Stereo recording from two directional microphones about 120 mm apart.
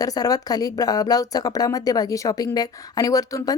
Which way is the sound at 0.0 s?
30° left (ahead or behind).